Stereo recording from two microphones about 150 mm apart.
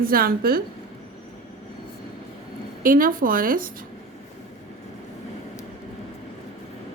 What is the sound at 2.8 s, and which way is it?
Speech, 70° right (ahead or behind).